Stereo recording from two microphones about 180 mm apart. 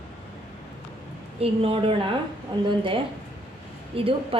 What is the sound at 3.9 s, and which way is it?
Speech, 30° right (ahead or behind).